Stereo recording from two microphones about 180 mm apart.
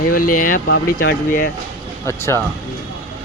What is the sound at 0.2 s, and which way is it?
Speech, 50° left (ahead or behind).